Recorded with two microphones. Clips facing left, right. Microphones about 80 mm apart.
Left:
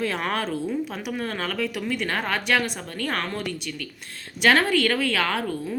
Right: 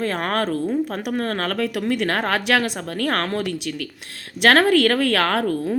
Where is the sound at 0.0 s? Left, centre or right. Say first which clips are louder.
Right 4 dB; right.